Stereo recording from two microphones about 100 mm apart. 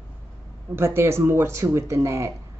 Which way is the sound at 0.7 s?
25° right (ahead or behind).